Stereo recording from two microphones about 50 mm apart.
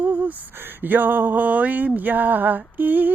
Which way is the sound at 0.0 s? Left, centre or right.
Right.